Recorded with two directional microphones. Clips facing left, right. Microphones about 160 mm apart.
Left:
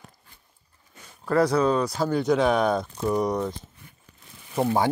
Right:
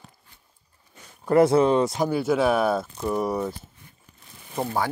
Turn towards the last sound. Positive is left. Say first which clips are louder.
# left 4 dB
turn(degrees=25)  # may be behind; listen again after turning